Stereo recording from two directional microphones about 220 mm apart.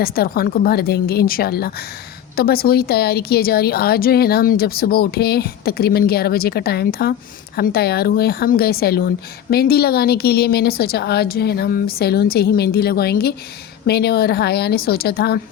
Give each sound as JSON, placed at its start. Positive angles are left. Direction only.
{"t": 0.0, "sound": "speech", "side_deg": 45}